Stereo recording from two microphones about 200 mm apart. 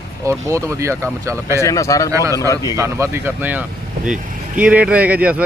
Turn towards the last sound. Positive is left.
turn(degrees=-5)  # may be behind; listen again after turning